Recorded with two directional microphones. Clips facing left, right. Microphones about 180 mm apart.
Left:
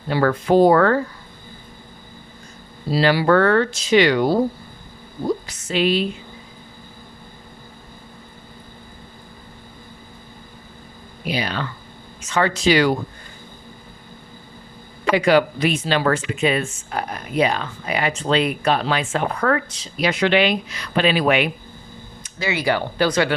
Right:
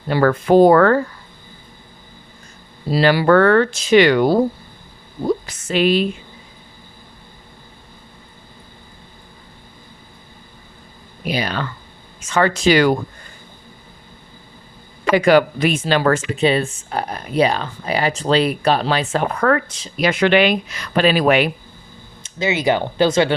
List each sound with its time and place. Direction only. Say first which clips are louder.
0.1 s speech: right 3 dB; 50° right (ahead or behind)
2.9 s speech: right 3 dB; 50° right (ahead or behind)
5.5 s speech: right 3 dB; 50° right (ahead or behind)
11.3 s speech: right 2 dB; 45° right (ahead or behind)
15.1 s speech: right 3 dB; 50° right (ahead or behind)
19.5 s speech: right 3 dB; 50° right (ahead or behind)
22.2 s speech: right 4 dB; 20° right (ahead or behind)